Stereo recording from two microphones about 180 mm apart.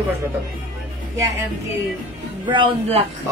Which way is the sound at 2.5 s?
30° right (ahead or behind).